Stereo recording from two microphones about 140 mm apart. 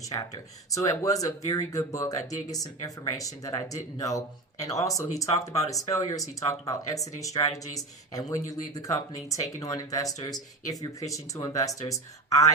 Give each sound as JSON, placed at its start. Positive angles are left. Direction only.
{"t": 0.7, "sound": "speech", "side_deg": 25}